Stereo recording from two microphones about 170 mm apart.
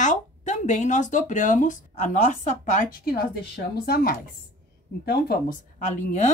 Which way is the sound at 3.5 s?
65° left (ahead or behind).